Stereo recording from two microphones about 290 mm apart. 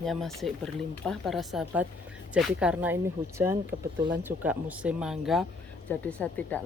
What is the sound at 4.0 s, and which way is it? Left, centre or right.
Speech, right.